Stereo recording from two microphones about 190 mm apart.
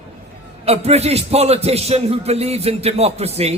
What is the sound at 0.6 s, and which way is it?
A man's voice, 35° right (ahead or behind).